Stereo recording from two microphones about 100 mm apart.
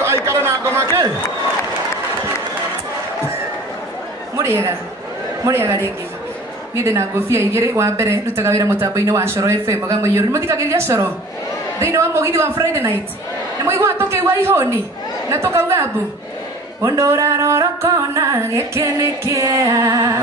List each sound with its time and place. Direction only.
0.0 s chatter: 25° right (ahead or behind)
4.4 s a woman's voice: 25° right (ahead or behind)
16.8 s music: 30° right (ahead or behind)